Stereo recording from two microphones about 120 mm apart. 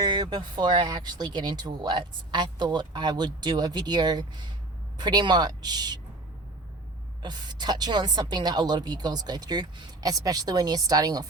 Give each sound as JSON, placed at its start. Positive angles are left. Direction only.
{"t": 0.0, "sound": "speech", "side_deg": -35}
{"t": 7.2, "sound": "speech", "side_deg": -35}